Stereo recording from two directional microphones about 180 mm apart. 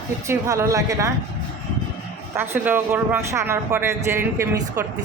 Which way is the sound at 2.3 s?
15° right (ahead or behind).